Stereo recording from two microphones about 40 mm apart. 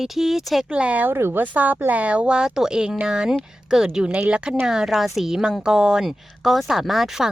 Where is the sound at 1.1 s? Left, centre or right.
Right.